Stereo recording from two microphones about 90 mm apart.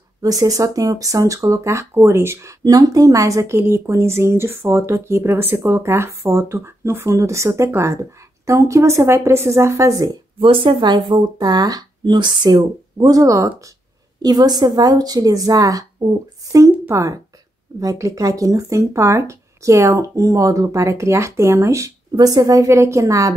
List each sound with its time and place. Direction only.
0.2 s speech: 40° right (ahead or behind)
2.6 s speech: 45° right (ahead or behind)
10.4 s speech: 70° right (ahead or behind); by 13.5 s 40° right (ahead or behind)
14.2 s speech: 50° right (ahead or behind)
16.9 s speech: 35° right (ahead or behind)
22.1 s speech: 45° right (ahead or behind)